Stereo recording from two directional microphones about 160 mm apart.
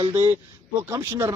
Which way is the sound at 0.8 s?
15° right (ahead or behind).